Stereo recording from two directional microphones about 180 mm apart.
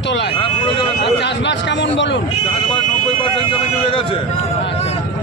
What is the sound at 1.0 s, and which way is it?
A man's voice, 85° left.